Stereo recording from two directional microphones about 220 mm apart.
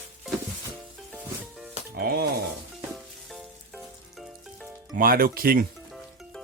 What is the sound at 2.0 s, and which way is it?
Speech, 45° right (ahead or behind).